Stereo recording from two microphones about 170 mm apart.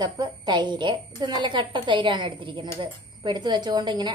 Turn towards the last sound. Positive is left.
turn(degrees=-25)  # may be behind; listen again after turning